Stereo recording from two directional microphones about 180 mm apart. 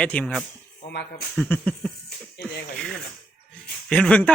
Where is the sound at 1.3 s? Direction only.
10° left (ahead or behind).